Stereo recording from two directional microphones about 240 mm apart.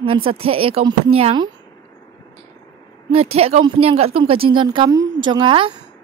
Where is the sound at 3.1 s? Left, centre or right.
Right.